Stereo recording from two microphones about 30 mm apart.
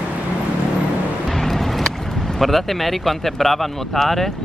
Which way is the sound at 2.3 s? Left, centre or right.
Centre.